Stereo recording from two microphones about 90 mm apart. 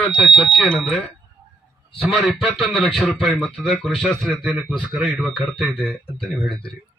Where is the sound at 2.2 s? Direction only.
15° left (ahead or behind).